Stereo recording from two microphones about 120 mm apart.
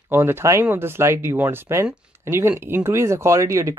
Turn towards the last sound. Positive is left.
turn(degrees=-25)  # may be behind; listen again after turning